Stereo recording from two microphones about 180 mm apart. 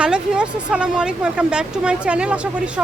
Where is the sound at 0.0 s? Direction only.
5° right (ahead or behind).